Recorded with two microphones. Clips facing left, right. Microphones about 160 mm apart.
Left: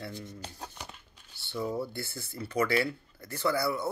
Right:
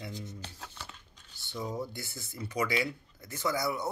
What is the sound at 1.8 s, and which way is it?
Speech, 15° right (ahead or behind).